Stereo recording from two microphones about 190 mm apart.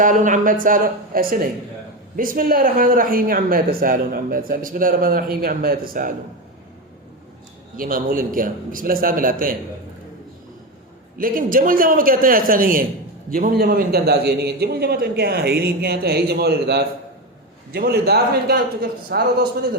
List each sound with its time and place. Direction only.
0.0 s speech: 45° right (ahead or behind)
7.8 s speech: 45° right (ahead or behind)
11.2 s a man's voice: 45° right (ahead or behind)